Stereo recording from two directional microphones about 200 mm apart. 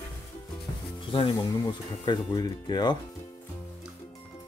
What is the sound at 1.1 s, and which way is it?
Speech, 25° left (ahead or behind).